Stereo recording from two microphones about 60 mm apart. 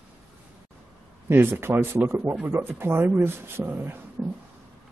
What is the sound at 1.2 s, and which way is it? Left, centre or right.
Speech, right.